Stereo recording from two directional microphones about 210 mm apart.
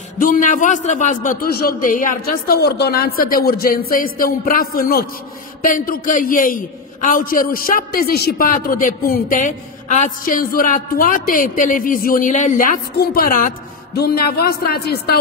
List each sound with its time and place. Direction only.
0.2 s a man's voice: 40° left (ahead or behind)